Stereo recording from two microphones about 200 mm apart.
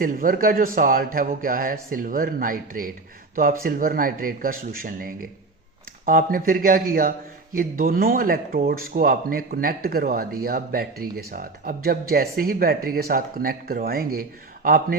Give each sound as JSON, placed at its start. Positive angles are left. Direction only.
{"t": 0.0, "sound": "speech", "side_deg": -45}